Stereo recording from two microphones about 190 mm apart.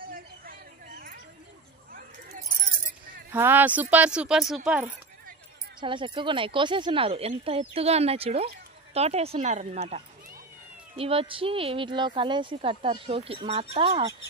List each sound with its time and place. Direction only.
0.1 s a sound: 50° right (ahead or behind)
3.3 s speech: 10° right (ahead or behind)
5.8 s speech: 25° right (ahead or behind)